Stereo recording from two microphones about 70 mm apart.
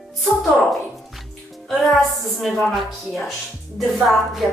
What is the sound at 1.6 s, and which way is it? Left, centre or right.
Speech, centre.